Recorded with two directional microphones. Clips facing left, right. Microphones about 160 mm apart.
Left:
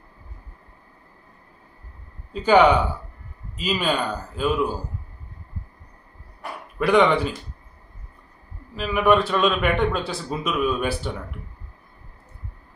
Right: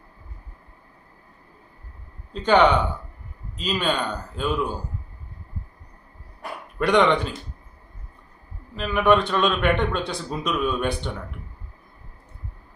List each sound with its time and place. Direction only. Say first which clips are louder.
2.3 s speech: left 2 dB; 10° left (ahead or behind)
6.7 s a man's voice: left 1 dB; 5° left (ahead or behind)
8.7 s a man's voice: even; 5° left (ahead or behind)